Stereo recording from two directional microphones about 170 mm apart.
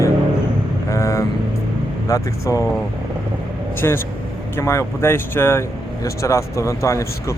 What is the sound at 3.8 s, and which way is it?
A man's voice, 15° left (ahead or behind).